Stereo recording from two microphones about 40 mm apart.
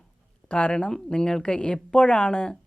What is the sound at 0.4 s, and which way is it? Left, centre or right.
Speech, left.